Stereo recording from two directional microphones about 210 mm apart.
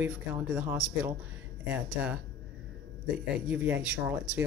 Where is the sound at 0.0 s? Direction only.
5° right (ahead or behind).